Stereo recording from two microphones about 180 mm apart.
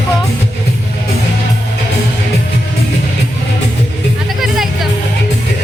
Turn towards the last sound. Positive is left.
turn(degrees=0)  # may be behind; listen again after turning